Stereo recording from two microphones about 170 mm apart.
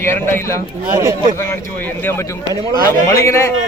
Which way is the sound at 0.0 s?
15° left (ahead or behind).